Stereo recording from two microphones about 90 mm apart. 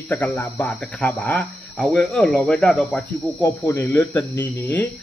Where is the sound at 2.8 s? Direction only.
15° left (ahead or behind).